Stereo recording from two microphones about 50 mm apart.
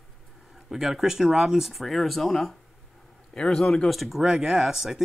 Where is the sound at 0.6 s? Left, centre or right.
Centre.